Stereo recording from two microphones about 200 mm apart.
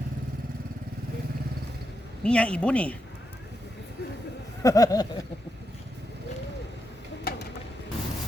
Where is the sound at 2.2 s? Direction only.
5° left (ahead or behind).